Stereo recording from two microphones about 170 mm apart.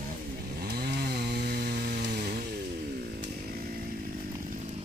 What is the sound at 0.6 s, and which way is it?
Chainsaw, 70° right (ahead or behind).